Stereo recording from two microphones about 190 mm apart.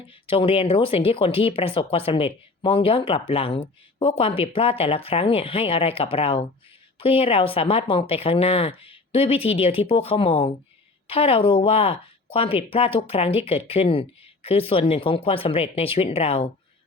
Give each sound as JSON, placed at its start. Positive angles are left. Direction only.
{"t": 0.1, "sound": "speech", "side_deg": 30}